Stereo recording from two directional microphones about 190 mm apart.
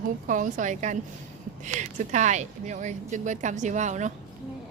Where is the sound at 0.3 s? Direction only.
40° right (ahead or behind).